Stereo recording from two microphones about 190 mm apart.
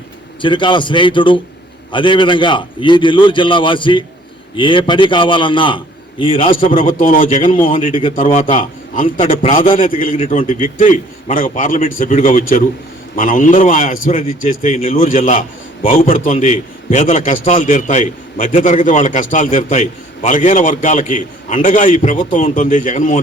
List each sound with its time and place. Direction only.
0.4 s a man's voice: 25° left (ahead or behind)
6.4 s a man's voice: 45° left (ahead or behind)
7.7 s a man's voice: 30° left (ahead or behind)
9.7 s a man's voice: 50° left (ahead or behind)